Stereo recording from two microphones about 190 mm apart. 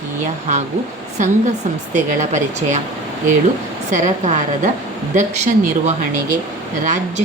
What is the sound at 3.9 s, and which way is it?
Speech, 40° right (ahead or behind).